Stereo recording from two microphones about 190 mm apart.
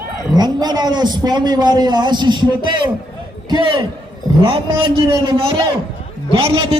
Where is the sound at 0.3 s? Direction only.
20° right (ahead or behind).